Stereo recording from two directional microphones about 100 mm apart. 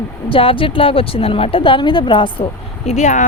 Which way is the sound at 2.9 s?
90° left.